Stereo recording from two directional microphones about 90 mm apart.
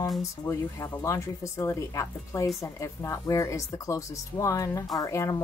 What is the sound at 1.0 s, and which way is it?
Speech, 35° left (ahead or behind).